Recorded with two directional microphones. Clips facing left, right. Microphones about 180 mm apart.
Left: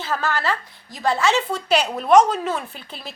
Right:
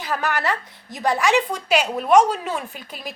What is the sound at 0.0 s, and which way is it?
A woman's voice, 15° right (ahead or behind).